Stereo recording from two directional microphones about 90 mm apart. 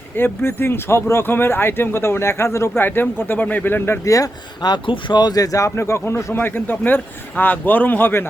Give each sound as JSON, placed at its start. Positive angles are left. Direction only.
{"t": 0.2, "sound": "speech", "side_deg": 25}
{"t": 4.0, "sound": "speech", "side_deg": 40}
{"t": 4.6, "sound": "speech", "side_deg": 60}